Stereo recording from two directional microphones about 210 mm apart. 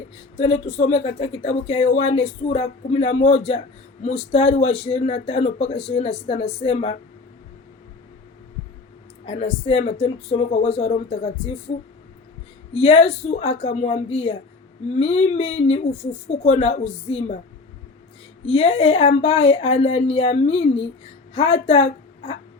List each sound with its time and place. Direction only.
0.3 s speech: 30° left (ahead or behind)
9.2 s speech: 30° left (ahead or behind)
12.7 s speech: 30° left (ahead or behind)
18.4 s speech: 30° left (ahead or behind)